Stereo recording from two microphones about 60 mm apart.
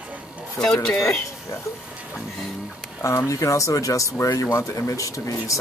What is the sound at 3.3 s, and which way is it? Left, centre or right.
Speech, left.